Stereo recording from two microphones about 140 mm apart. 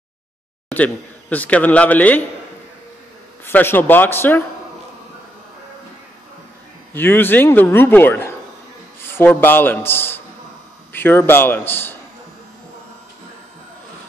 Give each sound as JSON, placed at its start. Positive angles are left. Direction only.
{"t": 0.7, "sound": "speech", "side_deg": 10}
{"t": 3.4, "sound": "a man's voice", "side_deg": 15}
{"t": 6.9, "sound": "a man's voice", "side_deg": 15}